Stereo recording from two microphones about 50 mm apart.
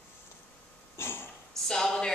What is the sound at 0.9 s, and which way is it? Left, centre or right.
Throat clearing, left.